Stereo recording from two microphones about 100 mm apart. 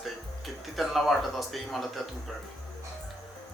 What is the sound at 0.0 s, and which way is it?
Speech, centre (ahead or behind).